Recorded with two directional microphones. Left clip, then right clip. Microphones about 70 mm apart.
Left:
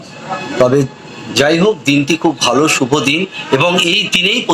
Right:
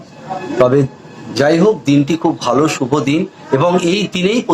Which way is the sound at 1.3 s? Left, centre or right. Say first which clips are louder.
Even; right.